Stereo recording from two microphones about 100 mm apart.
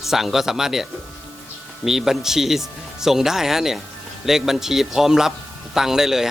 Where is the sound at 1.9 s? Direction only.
5° right (ahead or behind).